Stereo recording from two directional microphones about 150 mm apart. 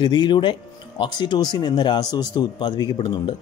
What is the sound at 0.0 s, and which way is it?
Speech, 30° left (ahead or behind).